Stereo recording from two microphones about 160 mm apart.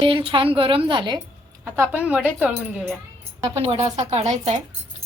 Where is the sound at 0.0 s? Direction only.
30° right (ahead or behind).